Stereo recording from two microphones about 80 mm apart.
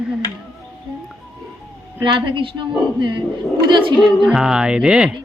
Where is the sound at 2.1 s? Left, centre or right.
Right.